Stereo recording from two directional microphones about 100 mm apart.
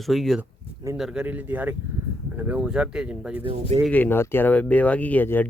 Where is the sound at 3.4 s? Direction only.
80° right.